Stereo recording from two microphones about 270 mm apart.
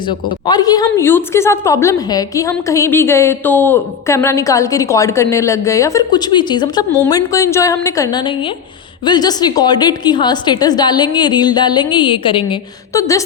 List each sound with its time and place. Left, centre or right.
0.1 s a woman's voice: centre